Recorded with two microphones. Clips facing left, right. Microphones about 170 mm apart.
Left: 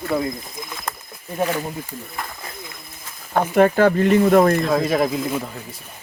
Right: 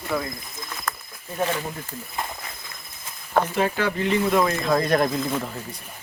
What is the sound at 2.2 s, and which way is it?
Snake, 20° right (ahead or behind).